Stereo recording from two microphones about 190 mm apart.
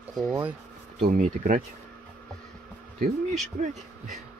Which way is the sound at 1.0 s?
45° right (ahead or behind).